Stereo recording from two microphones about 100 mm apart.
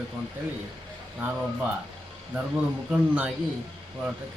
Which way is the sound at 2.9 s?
10° right (ahead or behind).